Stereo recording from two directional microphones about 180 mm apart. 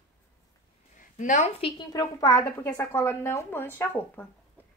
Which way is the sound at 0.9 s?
45° left (ahead or behind).